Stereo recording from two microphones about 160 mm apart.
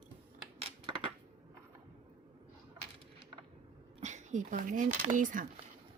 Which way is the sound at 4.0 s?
50° right (ahead or behind).